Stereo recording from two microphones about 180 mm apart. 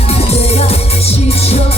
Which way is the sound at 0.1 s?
35° left (ahead or behind).